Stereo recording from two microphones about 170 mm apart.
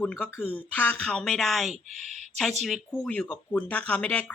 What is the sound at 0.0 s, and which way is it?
Speech, 10° left (ahead or behind).